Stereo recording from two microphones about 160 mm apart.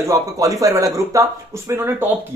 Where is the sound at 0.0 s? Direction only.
20° right (ahead or behind).